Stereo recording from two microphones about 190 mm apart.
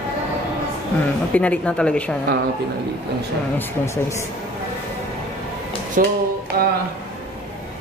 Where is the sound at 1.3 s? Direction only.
5° left (ahead or behind).